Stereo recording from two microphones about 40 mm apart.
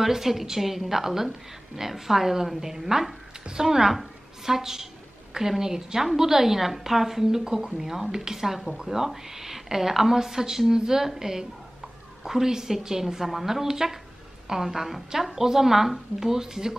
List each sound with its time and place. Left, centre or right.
0.0 s a woman's voice: centre